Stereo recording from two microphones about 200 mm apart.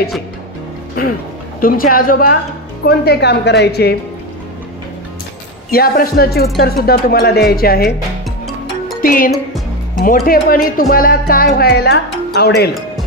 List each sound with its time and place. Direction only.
1.6 s a woman's voice: 45° left (ahead or behind)
5.7 s speech: 50° left (ahead or behind)
9.0 s speech: 45° left (ahead or behind)